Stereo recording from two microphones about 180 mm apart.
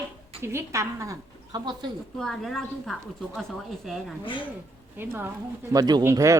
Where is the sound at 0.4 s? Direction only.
15° right (ahead or behind).